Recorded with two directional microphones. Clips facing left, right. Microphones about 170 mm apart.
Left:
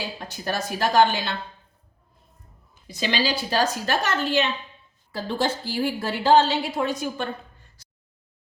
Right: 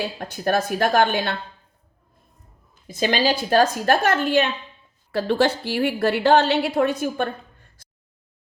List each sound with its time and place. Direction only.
0.0 s a woman's voice: 55° right (ahead or behind)
2.8 s a woman's voice: 50° right (ahead or behind)
5.1 s a woman's voice: 65° right (ahead or behind)